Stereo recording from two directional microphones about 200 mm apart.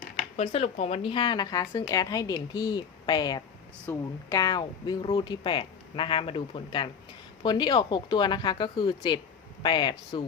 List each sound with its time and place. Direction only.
0.3 s speech: 30° left (ahead or behind)